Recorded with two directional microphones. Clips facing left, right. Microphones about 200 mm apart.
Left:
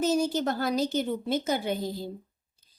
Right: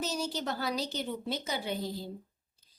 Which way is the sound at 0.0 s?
50° left (ahead or behind).